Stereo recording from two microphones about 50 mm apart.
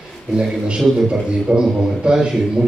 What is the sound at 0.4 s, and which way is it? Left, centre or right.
A man's voice, centre.